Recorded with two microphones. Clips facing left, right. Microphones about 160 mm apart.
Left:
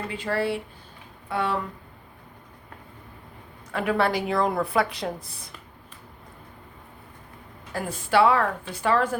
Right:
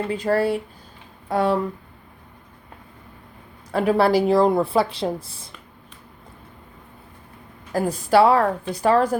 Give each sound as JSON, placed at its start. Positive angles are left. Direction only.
{"t": 0.1, "sound": "a woman's voice", "side_deg": -40}
{"t": 3.7, "sound": "a woman's voice", "side_deg": -35}
{"t": 7.7, "sound": "a woman's voice", "side_deg": -40}